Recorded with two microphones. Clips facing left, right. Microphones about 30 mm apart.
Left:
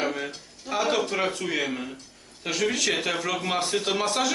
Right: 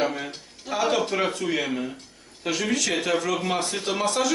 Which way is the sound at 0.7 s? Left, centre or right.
Centre.